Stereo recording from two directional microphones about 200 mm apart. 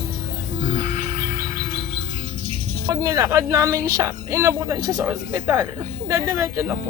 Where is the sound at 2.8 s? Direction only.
15° right (ahead or behind).